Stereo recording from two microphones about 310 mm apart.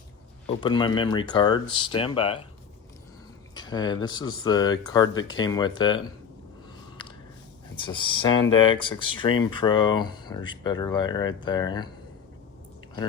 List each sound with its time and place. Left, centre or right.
0.4 s speech: centre
3.5 s speech: centre
7.0 s a sound: centre
7.8 s speech: centre